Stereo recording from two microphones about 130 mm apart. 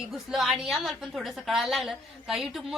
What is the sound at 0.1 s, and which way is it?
A woman's voice, centre (ahead or behind).